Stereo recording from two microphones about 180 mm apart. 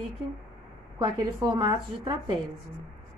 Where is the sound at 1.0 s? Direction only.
25° right (ahead or behind).